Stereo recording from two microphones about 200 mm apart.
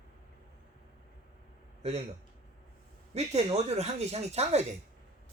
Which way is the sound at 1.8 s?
30° right (ahead or behind).